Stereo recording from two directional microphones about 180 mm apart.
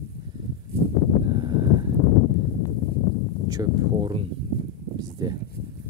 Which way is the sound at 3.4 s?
20° right (ahead or behind).